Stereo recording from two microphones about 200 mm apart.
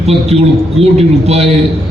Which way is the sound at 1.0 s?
30° right (ahead or behind).